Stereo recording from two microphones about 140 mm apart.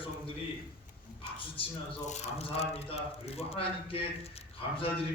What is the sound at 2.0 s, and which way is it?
Speech, 50° left (ahead or behind).